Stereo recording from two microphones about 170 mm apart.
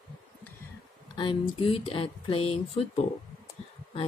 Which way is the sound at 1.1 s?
30° left (ahead or behind).